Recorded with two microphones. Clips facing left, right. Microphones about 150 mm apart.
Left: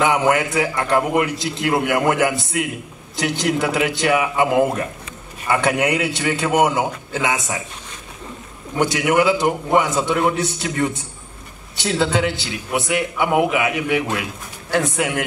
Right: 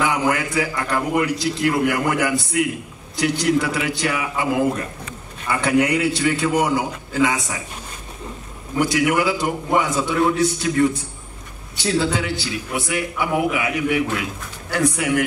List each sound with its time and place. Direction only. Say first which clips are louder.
0.0 s a man's voice: left 3 dB; 25° left (ahead or behind)
5.5 s a man's voice: even; 20° left (ahead or behind)
8.7 s a man's voice: left 1 dB; 20° left (ahead or behind)